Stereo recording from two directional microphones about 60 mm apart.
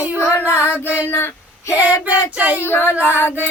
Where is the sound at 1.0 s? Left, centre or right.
Left.